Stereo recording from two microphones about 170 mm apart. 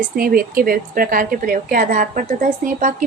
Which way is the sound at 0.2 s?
60° right (ahead or behind).